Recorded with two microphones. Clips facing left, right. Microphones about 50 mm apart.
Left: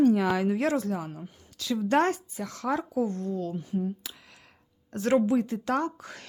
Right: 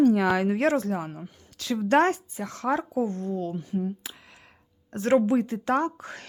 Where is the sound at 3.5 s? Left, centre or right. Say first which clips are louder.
Right 1 dB; right.